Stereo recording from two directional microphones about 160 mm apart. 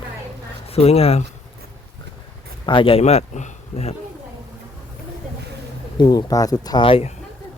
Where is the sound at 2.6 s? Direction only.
30° left (ahead or behind).